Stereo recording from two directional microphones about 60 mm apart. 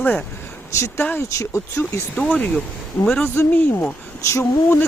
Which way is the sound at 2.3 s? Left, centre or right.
Left.